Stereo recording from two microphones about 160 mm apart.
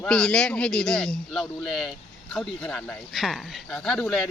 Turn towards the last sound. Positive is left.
turn(degrees=0)  # may be behind; listen again after turning